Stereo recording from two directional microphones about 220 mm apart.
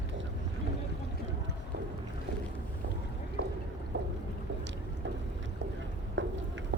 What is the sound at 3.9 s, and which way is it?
Boat, 55° right (ahead or behind).